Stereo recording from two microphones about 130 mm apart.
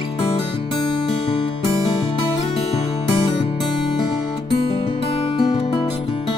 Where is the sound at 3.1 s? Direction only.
45° left (ahead or behind).